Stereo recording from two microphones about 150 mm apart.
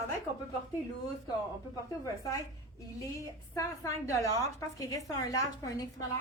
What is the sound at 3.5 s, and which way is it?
A woman's voice, 20° left (ahead or behind).